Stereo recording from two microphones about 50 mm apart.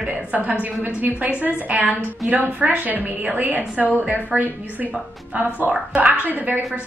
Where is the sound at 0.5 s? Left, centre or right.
Right.